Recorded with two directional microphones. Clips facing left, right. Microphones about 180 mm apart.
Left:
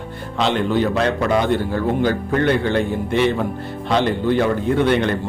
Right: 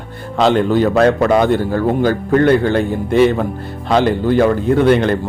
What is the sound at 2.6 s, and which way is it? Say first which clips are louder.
A man's voice: right 4 dB; 40° right (ahead or behind).